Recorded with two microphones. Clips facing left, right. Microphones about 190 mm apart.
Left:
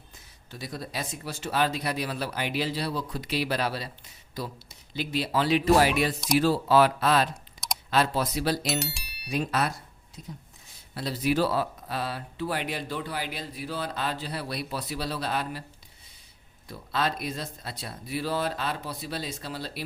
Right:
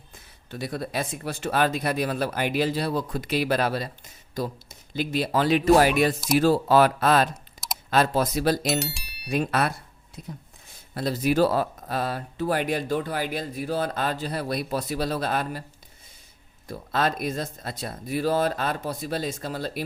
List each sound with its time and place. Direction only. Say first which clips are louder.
0.1 s speech: right 7 dB; 55° right (ahead or behind)
8.6 s speech: right 4 dB; centre (ahead or behind)
9.3 s speech: right 3 dB; 55° right (ahead or behind)
16.6 s speech: right 4 dB; 50° right (ahead or behind)